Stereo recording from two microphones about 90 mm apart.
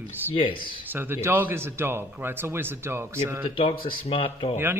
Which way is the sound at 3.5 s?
80° left.